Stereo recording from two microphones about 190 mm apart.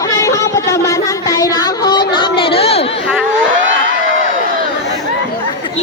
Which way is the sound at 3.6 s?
90° right.